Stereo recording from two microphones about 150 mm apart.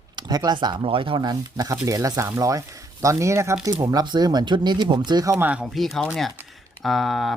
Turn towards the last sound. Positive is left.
turn(degrees=0)  # may be behind; listen again after turning